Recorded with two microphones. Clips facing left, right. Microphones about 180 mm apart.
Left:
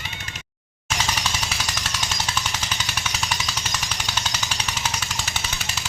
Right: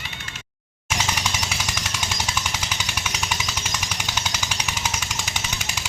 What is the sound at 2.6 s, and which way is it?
Jackhammer, 10° right (ahead or behind).